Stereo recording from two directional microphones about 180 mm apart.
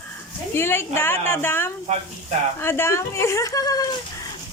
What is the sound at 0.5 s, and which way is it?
A woman's voice, 15° left (ahead or behind).